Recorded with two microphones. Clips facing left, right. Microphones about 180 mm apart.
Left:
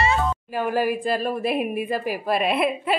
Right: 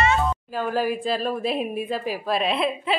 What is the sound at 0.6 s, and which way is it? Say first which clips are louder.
A woman's voice: left 2 dB; 10° left (ahead or behind).